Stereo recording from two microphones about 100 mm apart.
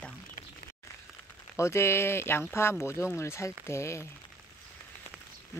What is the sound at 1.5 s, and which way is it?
Speech, 30° left (ahead or behind).